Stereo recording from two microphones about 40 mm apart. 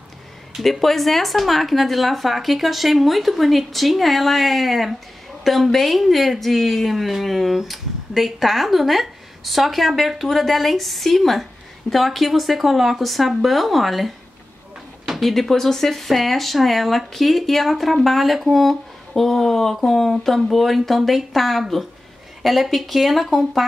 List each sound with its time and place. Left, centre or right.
0.6 s speech: centre